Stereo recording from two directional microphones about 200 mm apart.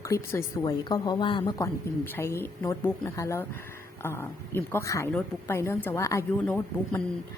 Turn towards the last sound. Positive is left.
turn(degrees=10)  # may be behind; listen again after turning